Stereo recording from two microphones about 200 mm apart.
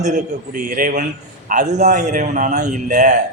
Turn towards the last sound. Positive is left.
turn(degrees=-35)  # may be behind; listen again after turning